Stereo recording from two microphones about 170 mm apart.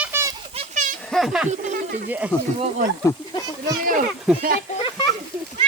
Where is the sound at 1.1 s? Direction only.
Centre (ahead or behind).